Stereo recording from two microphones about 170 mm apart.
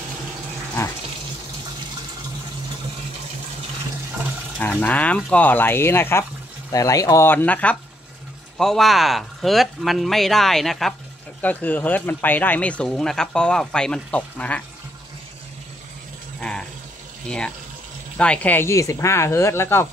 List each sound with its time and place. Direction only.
4.6 s speech: 10° left (ahead or behind)
16.3 s a sound: 5° left (ahead or behind)
18.1 s speech: 5° left (ahead or behind)